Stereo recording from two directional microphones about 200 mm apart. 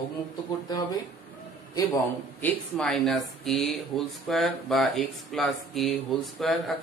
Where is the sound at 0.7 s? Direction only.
20° left (ahead or behind).